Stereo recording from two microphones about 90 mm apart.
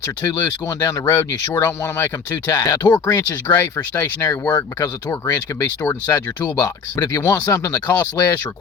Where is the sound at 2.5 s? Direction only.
45° left (ahead or behind).